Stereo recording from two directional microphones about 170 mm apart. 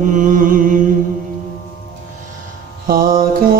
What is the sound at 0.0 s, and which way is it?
Music, 50° right (ahead or behind).